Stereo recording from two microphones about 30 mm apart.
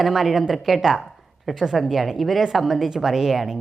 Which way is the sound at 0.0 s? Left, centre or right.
Centre.